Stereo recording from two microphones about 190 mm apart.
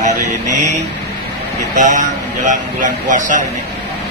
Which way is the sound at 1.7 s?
40° right (ahead or behind).